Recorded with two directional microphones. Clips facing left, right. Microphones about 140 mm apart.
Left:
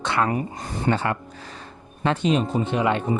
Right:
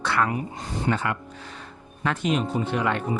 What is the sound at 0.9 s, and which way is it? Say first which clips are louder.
Speech: left 3 dB; 30° left (ahead or behind).